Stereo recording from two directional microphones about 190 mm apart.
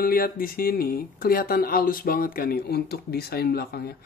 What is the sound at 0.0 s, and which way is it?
A woman's voice, 50° left (ahead or behind).